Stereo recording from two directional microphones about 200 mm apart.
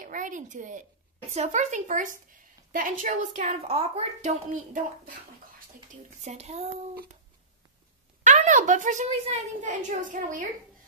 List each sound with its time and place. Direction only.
0.0 s a woman's voice: 40° right (ahead or behind)
6.2 s a woman's voice: 35° right (ahead or behind)
8.3 s a woman's voice: 35° right (ahead or behind)